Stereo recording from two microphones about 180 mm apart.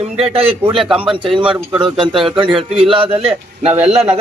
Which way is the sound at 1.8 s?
25° right (ahead or behind).